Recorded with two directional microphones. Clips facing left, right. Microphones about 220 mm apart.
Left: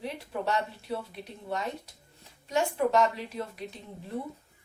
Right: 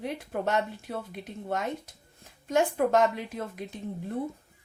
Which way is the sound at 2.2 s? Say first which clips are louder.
Right 3 dB; 50° right (ahead or behind).